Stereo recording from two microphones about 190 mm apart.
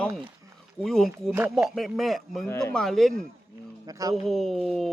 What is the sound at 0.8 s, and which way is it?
Speech, centre (ahead or behind).